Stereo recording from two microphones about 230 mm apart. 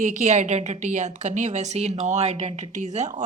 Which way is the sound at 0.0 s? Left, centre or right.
Right.